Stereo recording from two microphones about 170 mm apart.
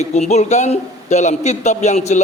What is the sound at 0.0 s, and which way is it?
A man's voice, 40° left (ahead or behind).